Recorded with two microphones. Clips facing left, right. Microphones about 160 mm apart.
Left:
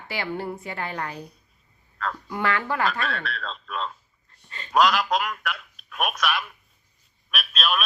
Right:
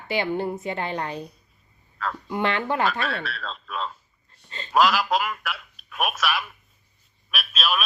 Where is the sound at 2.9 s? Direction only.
Centre (ahead or behind).